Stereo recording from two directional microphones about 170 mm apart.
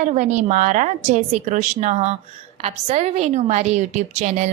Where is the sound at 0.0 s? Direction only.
45° right (ahead or behind).